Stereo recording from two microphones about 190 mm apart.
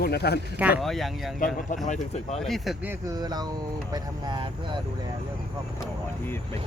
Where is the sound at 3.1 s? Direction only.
20° right (ahead or behind).